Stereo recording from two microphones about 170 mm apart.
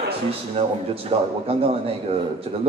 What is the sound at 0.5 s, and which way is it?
Speech, 35° right (ahead or behind).